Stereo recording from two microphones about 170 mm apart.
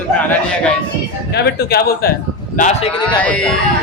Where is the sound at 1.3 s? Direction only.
75° left (ahead or behind).